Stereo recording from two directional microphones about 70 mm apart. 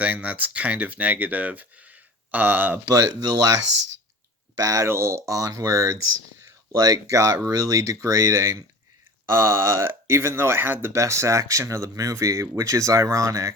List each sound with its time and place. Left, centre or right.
0.0 s speech: centre
4.5 s speech: right